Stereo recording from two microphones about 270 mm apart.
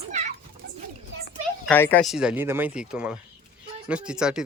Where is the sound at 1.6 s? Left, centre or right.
Centre.